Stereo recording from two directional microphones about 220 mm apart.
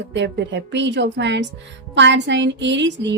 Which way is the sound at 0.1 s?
55° right (ahead or behind).